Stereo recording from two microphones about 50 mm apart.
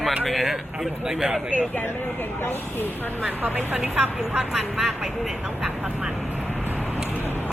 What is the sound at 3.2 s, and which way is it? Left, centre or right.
Speech, right.